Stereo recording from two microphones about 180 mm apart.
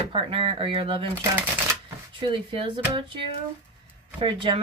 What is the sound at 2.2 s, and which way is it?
Speech, 30° right (ahead or behind).